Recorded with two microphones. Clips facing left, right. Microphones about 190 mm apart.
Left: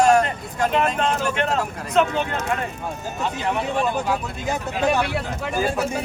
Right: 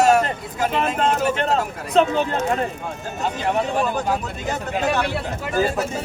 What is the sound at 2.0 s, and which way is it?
Speech, 30° right (ahead or behind).